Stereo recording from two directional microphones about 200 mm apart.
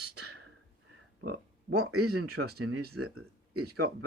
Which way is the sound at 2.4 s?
70° right (ahead or behind).